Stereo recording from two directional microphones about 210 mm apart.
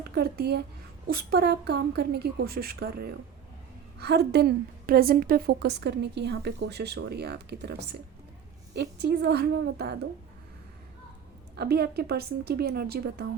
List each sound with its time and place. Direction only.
0.0 s a woman's voice: 50° right (ahead or behind)
11.5 s a woman's voice: 50° right (ahead or behind)